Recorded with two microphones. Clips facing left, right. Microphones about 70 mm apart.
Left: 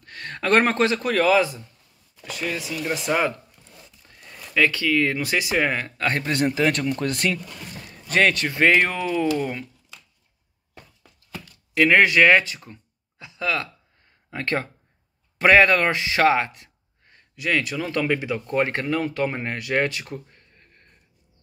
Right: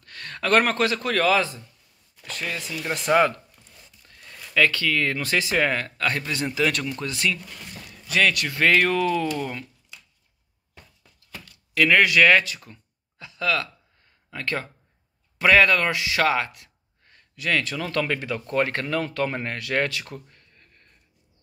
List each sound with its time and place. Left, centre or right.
0.0 s speech: left; by 3.3 s centre
4.1 s speech: centre
6.0 s speech: left
6.9 s speech: left
8.1 s speech: left
11.7 s speech: left
14.3 s a man's voice: left